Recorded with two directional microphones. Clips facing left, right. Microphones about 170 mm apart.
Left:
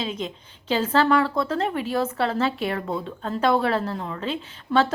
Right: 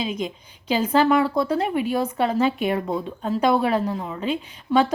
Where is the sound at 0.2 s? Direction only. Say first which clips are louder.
Right 3 dB; 15° right (ahead or behind).